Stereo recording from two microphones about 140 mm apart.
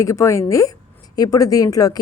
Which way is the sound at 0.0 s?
20° left (ahead or behind).